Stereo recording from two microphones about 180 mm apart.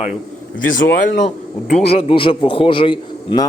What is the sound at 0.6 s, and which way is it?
Speech, 90° left.